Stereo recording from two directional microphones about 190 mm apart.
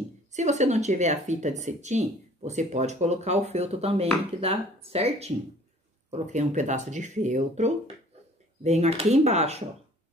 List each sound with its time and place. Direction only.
0.3 s speech: 40° right (ahead or behind)